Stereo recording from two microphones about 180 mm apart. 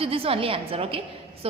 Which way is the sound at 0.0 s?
30° right (ahead or behind).